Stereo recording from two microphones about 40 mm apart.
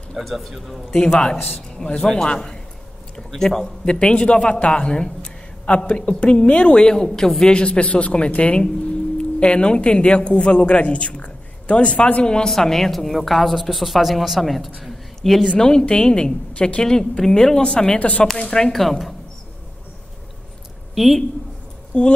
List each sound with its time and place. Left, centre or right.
0.2 s a woman's voice: centre
0.8 s a man's voice: centre
1.5 s a man's voice: left
2.0 s a man's voice: centre
3.2 s a man's voice: centre
3.8 s speech: left
12.4 s a woman's voice: centre
14.8 s a sound: centre
15.9 s speech: left
17.9 s speech: left
18.4 s speech: centre
18.7 s a woman's voice: centre
20.9 s speech: centre
21.9 s speech: left